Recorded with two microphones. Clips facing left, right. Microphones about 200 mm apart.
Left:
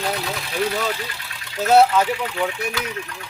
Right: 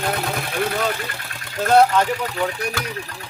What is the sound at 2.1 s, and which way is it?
Speech, 40° right (ahead or behind).